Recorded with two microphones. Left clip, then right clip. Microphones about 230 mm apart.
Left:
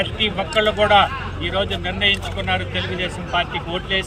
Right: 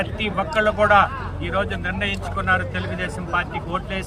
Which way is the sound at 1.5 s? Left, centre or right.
Centre.